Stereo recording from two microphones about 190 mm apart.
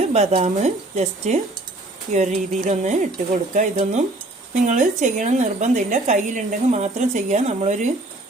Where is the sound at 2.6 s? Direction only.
40° right (ahead or behind).